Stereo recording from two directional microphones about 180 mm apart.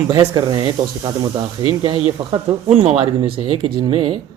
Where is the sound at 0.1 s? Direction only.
20° right (ahead or behind).